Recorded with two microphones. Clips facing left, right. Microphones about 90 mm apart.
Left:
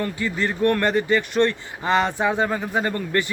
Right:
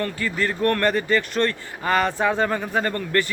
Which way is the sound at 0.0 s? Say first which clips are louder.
Even; 20° left (ahead or behind).